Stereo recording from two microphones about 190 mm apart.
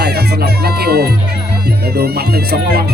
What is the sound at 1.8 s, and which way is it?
Speech, 55° right (ahead or behind).